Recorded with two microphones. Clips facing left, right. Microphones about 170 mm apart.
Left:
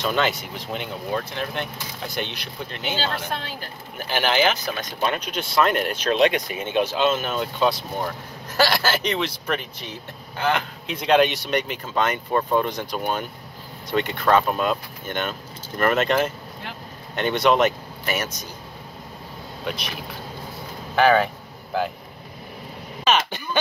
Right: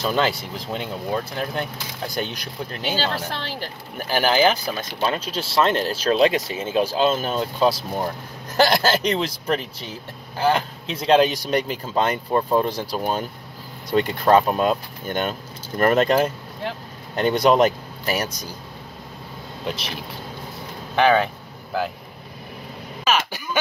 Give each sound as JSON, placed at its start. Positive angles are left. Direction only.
{"t": 0.1, "sound": "speech", "side_deg": -30}
{"t": 21.0, "sound": "speech", "side_deg": 5}
{"t": 23.0, "sound": "throat clearing", "side_deg": -5}